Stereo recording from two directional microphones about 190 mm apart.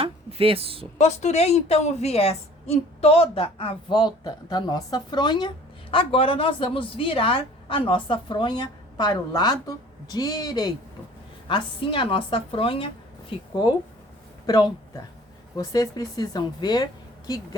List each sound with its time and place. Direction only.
0.0 s speech: 30° right (ahead or behind)
0.9 s a woman's voice: 35° left (ahead or behind)
14.4 s a woman's voice: 20° left (ahead or behind)